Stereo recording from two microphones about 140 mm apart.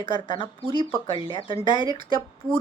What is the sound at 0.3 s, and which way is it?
A woman's voice, 40° left (ahead or behind).